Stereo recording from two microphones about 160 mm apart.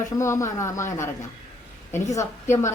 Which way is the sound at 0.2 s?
20° left (ahead or behind).